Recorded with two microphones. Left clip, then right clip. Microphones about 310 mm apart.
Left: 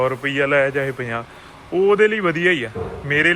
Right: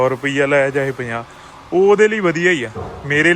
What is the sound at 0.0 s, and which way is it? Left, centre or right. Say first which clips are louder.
A man's voice: right 3 dB; centre.